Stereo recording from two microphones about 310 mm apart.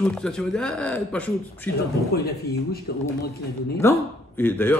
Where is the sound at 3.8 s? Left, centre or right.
Centre.